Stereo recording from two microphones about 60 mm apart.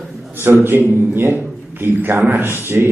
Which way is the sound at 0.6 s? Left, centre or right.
Right.